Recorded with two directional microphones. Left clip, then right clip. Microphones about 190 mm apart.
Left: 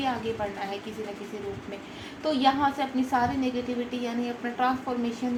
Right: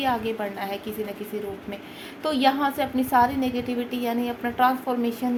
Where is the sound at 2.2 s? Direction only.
55° right (ahead or behind).